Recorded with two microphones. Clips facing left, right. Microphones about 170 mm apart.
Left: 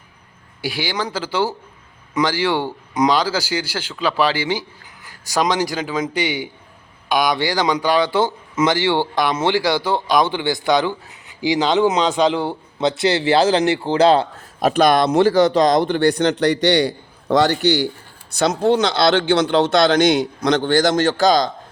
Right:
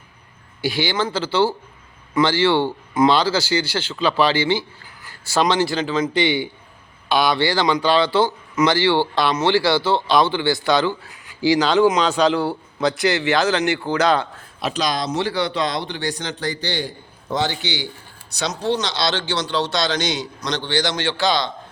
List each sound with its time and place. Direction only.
0.6 s speech: 10° left (ahead or behind); by 14.3 s 30° left (ahead or behind)
14.6 s speech: 55° left (ahead or behind)
18.3 s speech: 55° left (ahead or behind)